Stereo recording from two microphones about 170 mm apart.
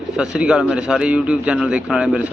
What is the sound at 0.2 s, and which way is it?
A man's voice, 5° right (ahead or behind).